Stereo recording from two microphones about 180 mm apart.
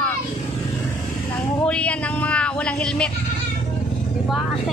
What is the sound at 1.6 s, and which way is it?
Speech, 5° left (ahead or behind).